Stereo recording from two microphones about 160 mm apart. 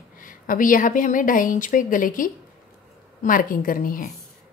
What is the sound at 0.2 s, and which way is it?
A woman's voice, 60° left (ahead or behind).